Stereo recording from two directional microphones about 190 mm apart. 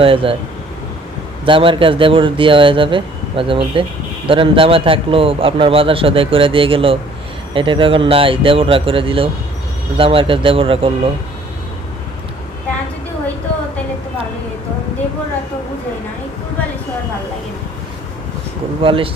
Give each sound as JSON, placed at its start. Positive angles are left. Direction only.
{"t": 0.0, "sound": "a man's voice", "side_deg": -30}
{"t": 1.5, "sound": "a man's voice", "side_deg": -25}
{"t": 18.8, "sound": "a man's voice", "side_deg": -30}